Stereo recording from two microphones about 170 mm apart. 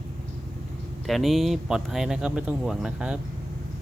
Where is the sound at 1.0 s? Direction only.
Centre (ahead or behind).